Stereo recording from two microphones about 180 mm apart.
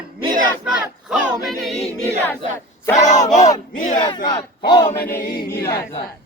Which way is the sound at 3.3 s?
40° left (ahead or behind).